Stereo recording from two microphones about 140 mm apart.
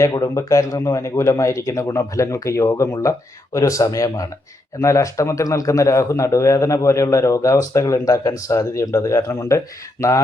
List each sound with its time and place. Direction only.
0.0 s a man's voice: 25° left (ahead or behind)